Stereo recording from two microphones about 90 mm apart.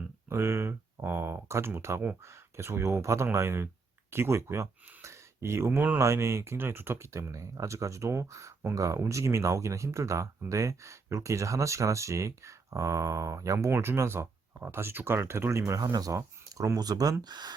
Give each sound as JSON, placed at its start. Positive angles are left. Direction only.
{"t": 0.3, "sound": "a sound", "side_deg": -30}
{"t": 2.3, "sound": "speech", "side_deg": -30}
{"t": 6.0, "sound": "speech", "side_deg": -35}
{"t": 16.1, "sound": "speech", "side_deg": -30}
{"t": 16.7, "sound": "speech", "side_deg": -45}